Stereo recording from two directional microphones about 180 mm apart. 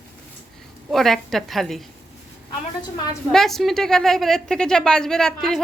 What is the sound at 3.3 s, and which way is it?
A woman's voice, centre (ahead or behind).